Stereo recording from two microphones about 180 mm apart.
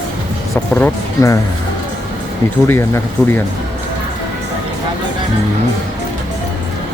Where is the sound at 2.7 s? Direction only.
15° left (ahead or behind).